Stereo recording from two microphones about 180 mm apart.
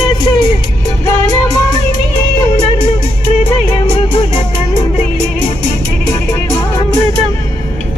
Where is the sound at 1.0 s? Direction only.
15° left (ahead or behind).